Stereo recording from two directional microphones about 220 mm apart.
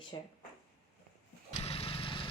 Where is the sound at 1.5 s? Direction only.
25° left (ahead or behind).